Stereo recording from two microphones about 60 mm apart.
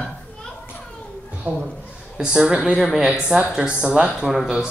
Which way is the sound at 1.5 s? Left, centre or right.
Right.